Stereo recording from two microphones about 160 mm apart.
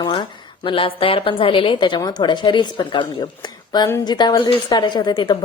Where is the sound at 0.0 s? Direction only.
30° left (ahead or behind).